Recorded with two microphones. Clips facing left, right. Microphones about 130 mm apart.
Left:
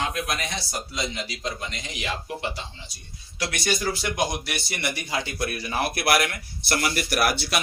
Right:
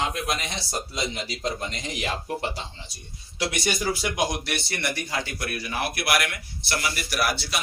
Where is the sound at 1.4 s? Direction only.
40° right (ahead or behind).